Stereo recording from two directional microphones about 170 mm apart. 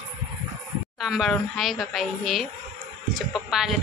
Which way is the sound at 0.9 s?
Centre (ahead or behind).